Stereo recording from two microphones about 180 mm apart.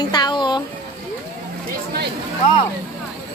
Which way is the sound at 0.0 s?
25° left (ahead or behind).